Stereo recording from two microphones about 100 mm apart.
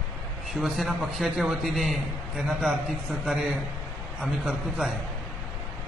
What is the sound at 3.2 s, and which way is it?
A man's voice, centre (ahead or behind).